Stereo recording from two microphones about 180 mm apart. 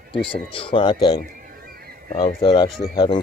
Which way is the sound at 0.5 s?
30° left (ahead or behind).